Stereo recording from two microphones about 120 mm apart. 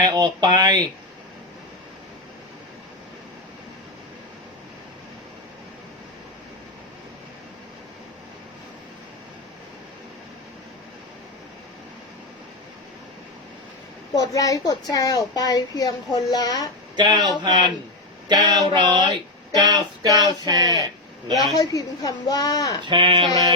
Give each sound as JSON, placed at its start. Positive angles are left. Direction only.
{"t": 0.0, "sound": "speech", "side_deg": -35}
{"t": 14.2, "sound": "a woman's voice", "side_deg": 30}
{"t": 17.0, "sound": "speech", "side_deg": -35}
{"t": 21.5, "sound": "a woman's voice", "side_deg": 30}
{"t": 22.9, "sound": "a sound", "side_deg": -45}